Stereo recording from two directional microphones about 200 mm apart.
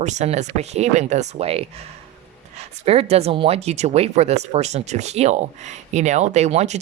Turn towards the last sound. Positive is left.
turn(degrees=-35)  # may be behind; listen again after turning